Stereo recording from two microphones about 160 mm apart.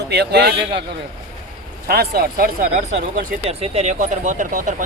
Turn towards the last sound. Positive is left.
turn(degrees=-55)  # may be behind; listen again after turning